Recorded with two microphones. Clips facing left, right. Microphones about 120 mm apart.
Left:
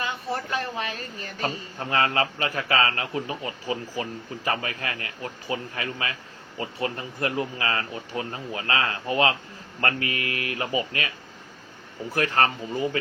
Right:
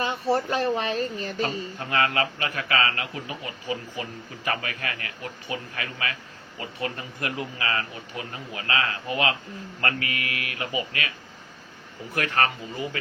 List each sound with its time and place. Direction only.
0.0 s speech: 30° right (ahead or behind)
1.4 s a man's voice: 30° left (ahead or behind)
12.1 s speech: 30° left (ahead or behind)